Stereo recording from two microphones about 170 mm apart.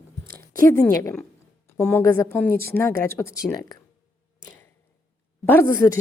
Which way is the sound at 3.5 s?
25° left (ahead or behind).